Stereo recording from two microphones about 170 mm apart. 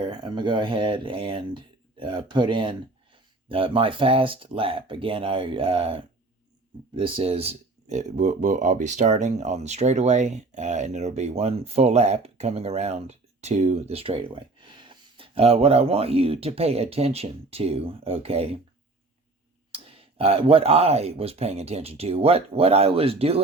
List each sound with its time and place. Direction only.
0.0 s speech: 25° right (ahead or behind)
19.7 s speech: 35° right (ahead or behind)